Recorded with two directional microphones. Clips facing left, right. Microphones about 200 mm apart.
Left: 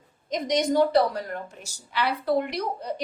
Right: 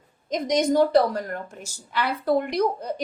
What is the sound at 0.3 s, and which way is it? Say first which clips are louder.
A woman's voice: right 2 dB; 50° right (ahead or behind).